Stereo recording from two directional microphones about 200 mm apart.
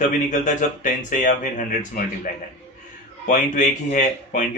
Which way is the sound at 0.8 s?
40° left (ahead or behind).